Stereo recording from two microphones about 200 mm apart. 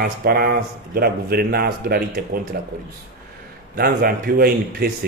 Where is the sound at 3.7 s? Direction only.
50° right (ahead or behind).